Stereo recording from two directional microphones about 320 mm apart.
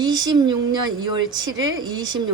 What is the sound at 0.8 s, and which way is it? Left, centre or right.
Speech, right.